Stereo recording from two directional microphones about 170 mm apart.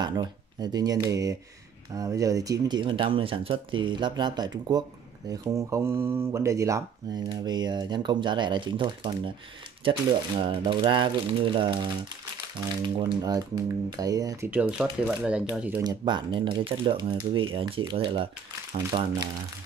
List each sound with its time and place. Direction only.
0.0 s speech: 25° right (ahead or behind); by 15.8 s 5° right (ahead or behind)
15.8 s speech: 25° right (ahead or behind)